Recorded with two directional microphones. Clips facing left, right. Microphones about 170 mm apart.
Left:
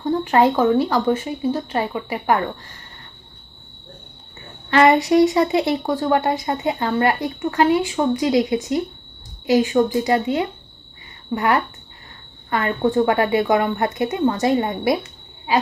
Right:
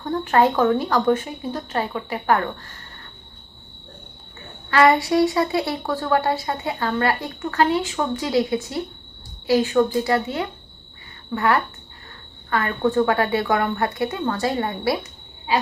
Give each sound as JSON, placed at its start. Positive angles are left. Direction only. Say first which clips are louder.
{"t": 0.0, "sound": "speech", "louder": "left 2 dB", "side_deg": 15}
{"t": 4.7, "sound": "speech", "louder": "left 2 dB", "side_deg": 20}